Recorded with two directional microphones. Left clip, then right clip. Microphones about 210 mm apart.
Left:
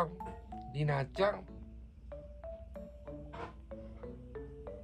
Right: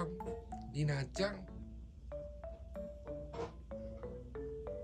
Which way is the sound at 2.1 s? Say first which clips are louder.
Even; 20° right (ahead or behind).